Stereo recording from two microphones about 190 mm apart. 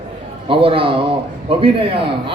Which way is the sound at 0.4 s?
30° right (ahead or behind).